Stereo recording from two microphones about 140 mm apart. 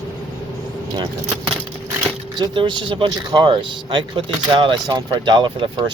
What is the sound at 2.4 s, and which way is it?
Speech, 35° right (ahead or behind).